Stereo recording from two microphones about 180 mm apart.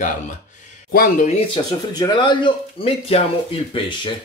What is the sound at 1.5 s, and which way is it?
Speech, 25° left (ahead or behind).